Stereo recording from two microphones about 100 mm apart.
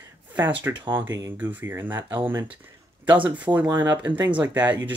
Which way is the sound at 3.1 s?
15° right (ahead or behind).